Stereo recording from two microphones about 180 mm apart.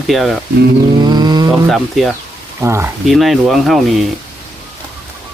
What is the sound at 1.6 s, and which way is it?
Speech, centre (ahead or behind).